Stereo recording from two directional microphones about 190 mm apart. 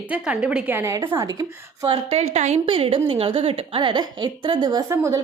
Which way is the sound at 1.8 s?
30° right (ahead or behind).